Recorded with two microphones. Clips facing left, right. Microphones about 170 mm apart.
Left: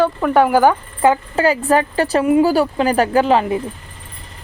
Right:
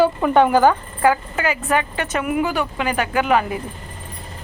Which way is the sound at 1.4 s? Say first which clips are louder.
Left 6 dB; 35° left (ahead or behind).